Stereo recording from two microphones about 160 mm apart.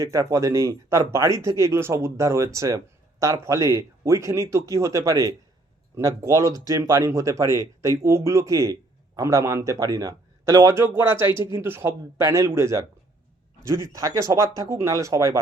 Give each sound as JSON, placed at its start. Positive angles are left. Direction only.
{"t": 0.0, "sound": "speech", "side_deg": -20}